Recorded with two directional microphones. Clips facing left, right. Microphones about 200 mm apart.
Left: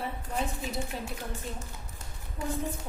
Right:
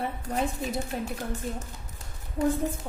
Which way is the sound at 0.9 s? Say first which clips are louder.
Right 5 dB; 55° right (ahead or behind).